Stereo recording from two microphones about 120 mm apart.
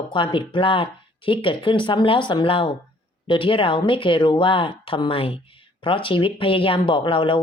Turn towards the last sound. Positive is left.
turn(degrees=45)  # may be behind; listen again after turning